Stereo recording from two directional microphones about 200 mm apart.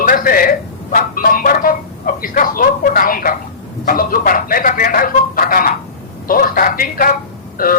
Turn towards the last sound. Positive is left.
turn(degrees=45)  # may be behind; listen again after turning